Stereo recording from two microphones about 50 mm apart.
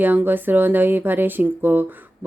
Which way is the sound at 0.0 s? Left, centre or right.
Right.